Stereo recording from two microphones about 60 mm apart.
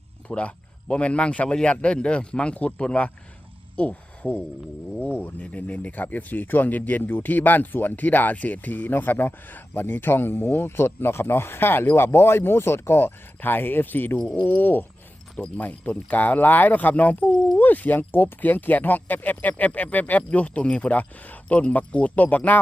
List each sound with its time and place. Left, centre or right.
0.3 s speech: centre